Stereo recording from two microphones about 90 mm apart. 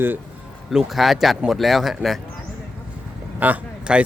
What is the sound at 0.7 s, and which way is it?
Speech, centre (ahead or behind).